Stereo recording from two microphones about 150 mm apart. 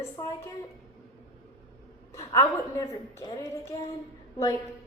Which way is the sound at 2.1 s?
20° left (ahead or behind).